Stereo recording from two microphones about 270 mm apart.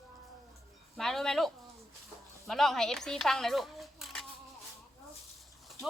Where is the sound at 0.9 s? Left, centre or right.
Centre.